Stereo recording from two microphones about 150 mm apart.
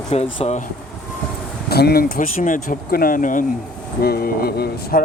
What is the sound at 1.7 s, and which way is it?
Speech, 90° left.